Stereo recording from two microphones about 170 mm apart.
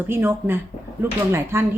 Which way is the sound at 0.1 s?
15° right (ahead or behind).